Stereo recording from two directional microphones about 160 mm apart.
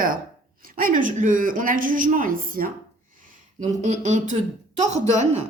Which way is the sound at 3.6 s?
45° right (ahead or behind).